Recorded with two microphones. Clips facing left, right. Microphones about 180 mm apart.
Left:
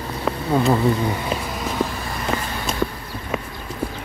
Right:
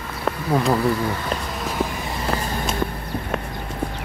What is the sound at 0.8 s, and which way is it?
Speech, 20° left (ahead or behind).